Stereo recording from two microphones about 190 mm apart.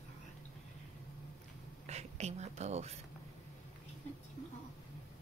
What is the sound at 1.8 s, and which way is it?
Speech, 35° right (ahead or behind).